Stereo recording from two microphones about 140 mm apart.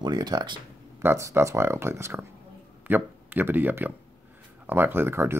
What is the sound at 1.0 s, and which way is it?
Speech, 20° right (ahead or behind).